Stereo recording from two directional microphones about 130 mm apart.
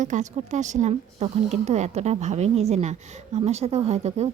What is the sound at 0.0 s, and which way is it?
Speech, 70° right (ahead or behind).